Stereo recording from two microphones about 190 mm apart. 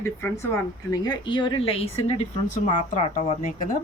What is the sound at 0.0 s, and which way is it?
A woman's voice, 10° left (ahead or behind).